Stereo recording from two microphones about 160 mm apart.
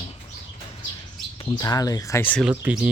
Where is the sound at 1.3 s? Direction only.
25° left (ahead or behind).